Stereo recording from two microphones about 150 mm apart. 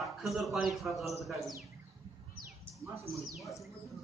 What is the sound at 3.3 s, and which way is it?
Speech, centre (ahead or behind).